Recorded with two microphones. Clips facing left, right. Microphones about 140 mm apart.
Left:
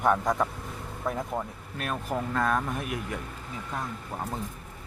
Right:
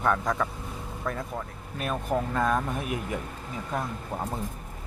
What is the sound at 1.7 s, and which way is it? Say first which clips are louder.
Speech: right 3 dB; centre (ahead or behind).